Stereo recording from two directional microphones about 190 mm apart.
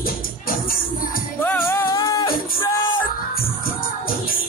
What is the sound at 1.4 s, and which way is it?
Music, 15° left (ahead or behind).